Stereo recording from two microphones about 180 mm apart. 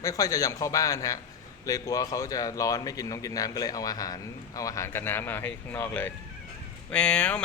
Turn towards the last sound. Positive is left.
turn(degrees=5)  # may be behind; listen again after turning